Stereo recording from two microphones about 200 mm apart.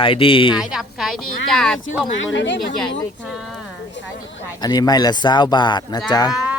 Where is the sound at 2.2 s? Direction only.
65° left (ahead or behind).